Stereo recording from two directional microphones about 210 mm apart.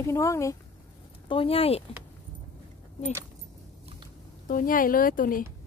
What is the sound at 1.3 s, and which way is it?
Speech, 25° left (ahead or behind).